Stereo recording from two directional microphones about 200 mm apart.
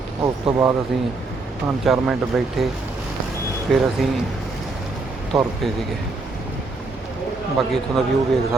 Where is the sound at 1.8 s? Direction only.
Centre (ahead or behind).